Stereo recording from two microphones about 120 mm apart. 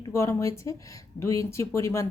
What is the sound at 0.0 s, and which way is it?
Speech, 25° left (ahead or behind).